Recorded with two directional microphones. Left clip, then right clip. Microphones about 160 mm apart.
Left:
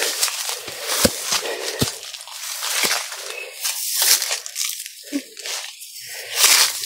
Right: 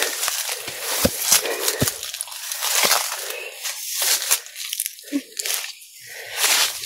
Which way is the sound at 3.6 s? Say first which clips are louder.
Left 5 dB; 45° left (ahead or behind).